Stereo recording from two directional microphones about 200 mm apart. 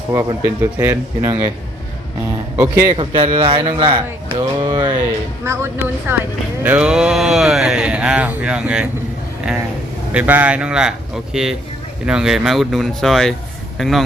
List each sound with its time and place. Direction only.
0.1 s speech: 15° right (ahead or behind)
2.8 s speech: 25° right (ahead or behind)
5.4 s speech: 10° right (ahead or behind)
10.1 s speech: 10° right (ahead or behind)